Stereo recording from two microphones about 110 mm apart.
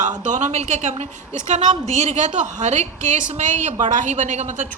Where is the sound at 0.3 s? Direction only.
90° right.